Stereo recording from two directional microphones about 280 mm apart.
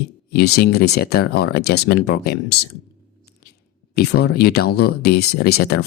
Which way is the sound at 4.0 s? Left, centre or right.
Left.